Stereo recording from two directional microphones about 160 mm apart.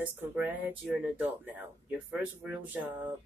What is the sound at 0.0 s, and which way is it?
Speech, 10° right (ahead or behind).